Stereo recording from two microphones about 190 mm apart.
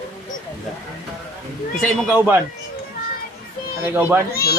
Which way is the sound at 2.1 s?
10° right (ahead or behind).